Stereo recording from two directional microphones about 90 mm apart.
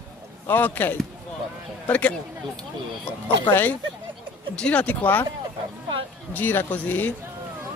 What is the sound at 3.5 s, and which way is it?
Speech, 20° left (ahead or behind).